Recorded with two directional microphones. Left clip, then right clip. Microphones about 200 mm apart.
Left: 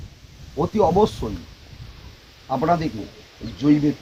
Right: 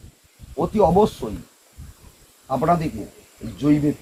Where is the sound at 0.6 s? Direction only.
30° right (ahead or behind).